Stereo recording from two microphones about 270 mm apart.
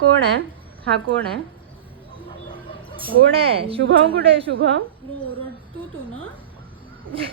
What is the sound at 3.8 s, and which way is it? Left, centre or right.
Speech, right.